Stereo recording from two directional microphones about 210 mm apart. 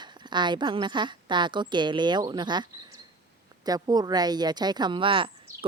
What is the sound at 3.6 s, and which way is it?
A woman's voice, 20° right (ahead or behind).